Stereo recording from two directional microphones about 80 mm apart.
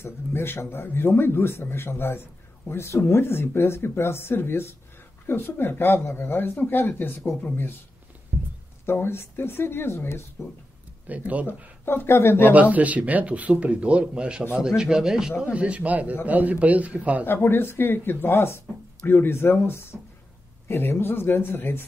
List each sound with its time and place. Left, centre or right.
0.0 s speech: left
8.8 s speech: left
11.1 s a man's voice: centre
11.4 s speech: left
12.5 s speech: centre
15.5 s a man's voice: centre
17.3 s speech: left